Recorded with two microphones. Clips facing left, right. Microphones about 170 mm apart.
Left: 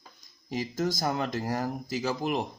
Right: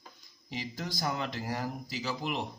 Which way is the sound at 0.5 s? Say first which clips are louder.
Left 9 dB; 45° left (ahead or behind).